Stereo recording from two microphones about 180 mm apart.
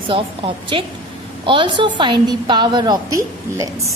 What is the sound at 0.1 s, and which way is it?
A woman's voice, 30° right (ahead or behind).